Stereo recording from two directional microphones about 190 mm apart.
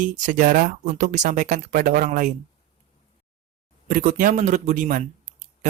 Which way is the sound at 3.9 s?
45° right (ahead or behind).